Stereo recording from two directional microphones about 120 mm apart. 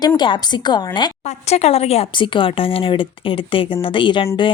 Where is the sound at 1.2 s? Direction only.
65° left (ahead or behind).